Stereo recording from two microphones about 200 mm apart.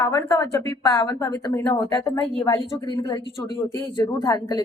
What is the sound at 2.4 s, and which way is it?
A woman's voice, 25° left (ahead or behind).